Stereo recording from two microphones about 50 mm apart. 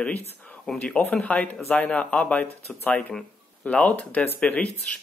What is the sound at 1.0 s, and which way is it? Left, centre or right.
Speech, left.